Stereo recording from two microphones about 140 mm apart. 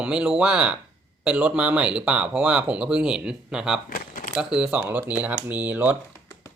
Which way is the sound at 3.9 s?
80° left.